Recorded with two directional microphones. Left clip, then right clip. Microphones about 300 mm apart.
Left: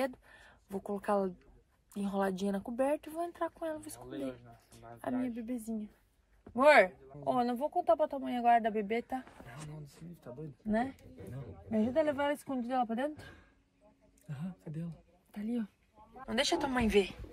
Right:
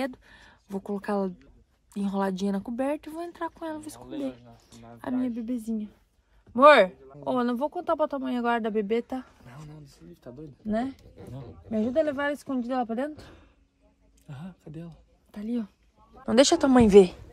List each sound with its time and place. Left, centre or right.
0.0 s speech: centre
4.1 s speech: right
4.6 s a sound: centre
5.3 s speech: centre
11.7 s a woman's voice: centre
16.3 s speech: centre